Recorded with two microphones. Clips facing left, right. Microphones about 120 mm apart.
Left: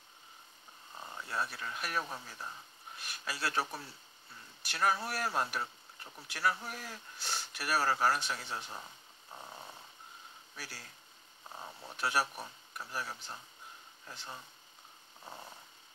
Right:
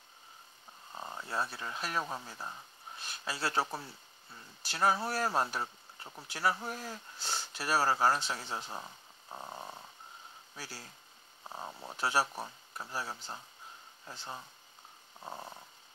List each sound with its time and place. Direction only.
0.9 s speech: 25° right (ahead or behind)
10.5 s speech: 25° right (ahead or behind)